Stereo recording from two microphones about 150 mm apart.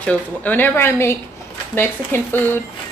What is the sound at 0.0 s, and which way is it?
Speech, 10° left (ahead or behind).